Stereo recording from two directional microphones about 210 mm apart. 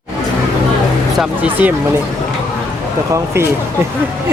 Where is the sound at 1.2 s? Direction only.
10° right (ahead or behind).